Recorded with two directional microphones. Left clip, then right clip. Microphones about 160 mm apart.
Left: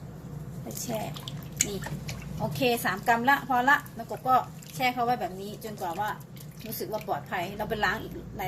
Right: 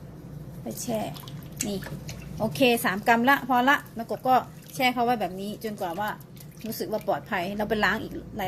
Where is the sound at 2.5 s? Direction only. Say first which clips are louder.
Right 4 dB; 60° right (ahead or behind).